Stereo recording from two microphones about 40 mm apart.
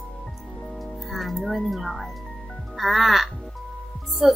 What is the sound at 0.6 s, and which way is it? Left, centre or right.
Music, centre.